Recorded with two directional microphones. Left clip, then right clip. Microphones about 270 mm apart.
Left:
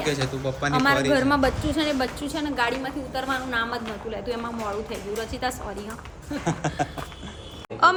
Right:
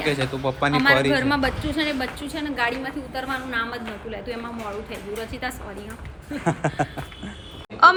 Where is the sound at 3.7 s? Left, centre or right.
Centre.